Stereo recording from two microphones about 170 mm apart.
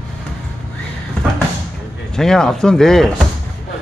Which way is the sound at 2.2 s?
5° left (ahead or behind).